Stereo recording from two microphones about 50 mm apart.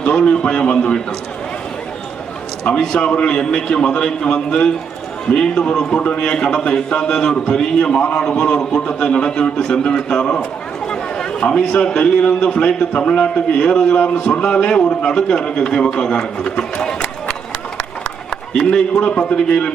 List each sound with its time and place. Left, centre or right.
0.0 s a man's voice: centre
2.7 s a man's voice: left
9.3 s a man's voice: centre
18.3 s a man's voice: centre